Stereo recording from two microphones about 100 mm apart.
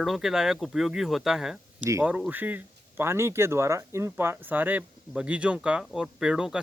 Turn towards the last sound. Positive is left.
turn(degrees=-5)  # may be behind; listen again after turning